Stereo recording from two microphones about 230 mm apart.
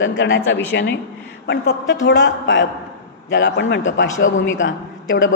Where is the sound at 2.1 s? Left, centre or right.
Left.